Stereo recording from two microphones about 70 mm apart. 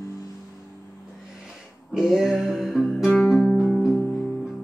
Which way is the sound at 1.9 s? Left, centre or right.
Centre.